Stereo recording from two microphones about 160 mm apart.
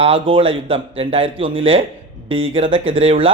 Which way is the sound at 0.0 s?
35° right (ahead or behind).